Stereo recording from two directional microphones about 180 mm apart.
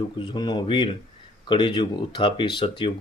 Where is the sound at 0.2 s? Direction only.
25° left (ahead or behind).